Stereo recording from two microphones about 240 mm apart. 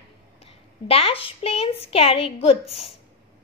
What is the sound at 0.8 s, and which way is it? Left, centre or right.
A woman's voice, left.